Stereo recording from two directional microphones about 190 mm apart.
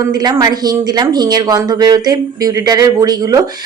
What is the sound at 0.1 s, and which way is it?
Speech, 20° right (ahead or behind).